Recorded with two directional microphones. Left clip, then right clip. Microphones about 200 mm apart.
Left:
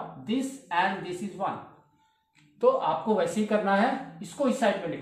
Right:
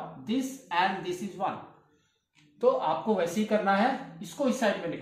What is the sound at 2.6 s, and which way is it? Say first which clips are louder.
A woman's voice: left 2 dB; 15° left (ahead or behind).